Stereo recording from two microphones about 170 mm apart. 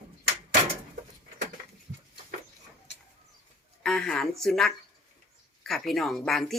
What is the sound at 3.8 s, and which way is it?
Speech, centre (ahead or behind).